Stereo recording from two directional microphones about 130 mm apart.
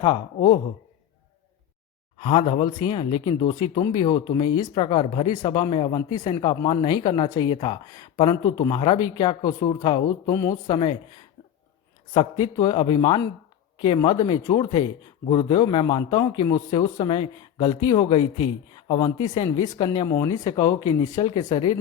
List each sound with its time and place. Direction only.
2.1 s speech: 45° left (ahead or behind); by 10.6 s 25° left (ahead or behind)
10.7 s speech: 35° left (ahead or behind)
12.4 s a man's voice: 35° left (ahead or behind)